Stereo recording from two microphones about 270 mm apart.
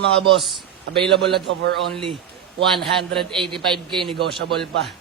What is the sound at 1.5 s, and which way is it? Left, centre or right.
Speech, right.